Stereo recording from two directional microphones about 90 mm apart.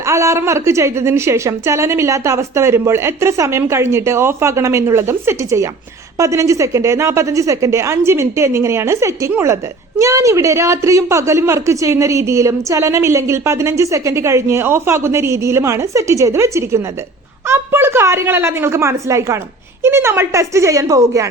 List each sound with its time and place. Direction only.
0.0 s a woman's voice: 30° right (ahead or behind)